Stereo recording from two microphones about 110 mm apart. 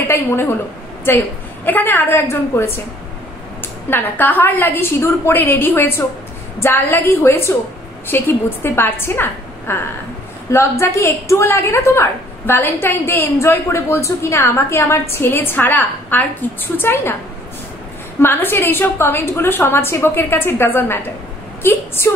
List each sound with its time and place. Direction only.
0.0 s a woman's voice: 20° left (ahead or behind)
3.9 s a woman's voice: 15° left (ahead or behind)
18.2 s a woman's voice: 20° left (ahead or behind)